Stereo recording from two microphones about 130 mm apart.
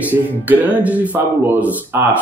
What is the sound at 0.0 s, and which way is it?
Speech, 15° right (ahead or behind).